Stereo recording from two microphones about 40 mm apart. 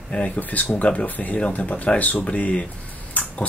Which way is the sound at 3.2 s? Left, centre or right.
Left.